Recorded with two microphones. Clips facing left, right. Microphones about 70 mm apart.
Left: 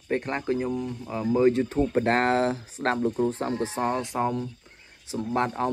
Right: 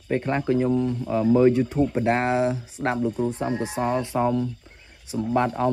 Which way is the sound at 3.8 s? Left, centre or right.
Left.